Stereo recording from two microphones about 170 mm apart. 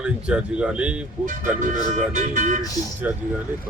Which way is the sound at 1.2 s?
50° right (ahead or behind).